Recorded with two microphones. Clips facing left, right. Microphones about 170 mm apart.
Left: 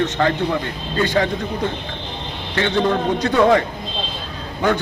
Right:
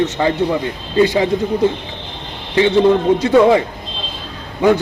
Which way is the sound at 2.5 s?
10° right (ahead or behind).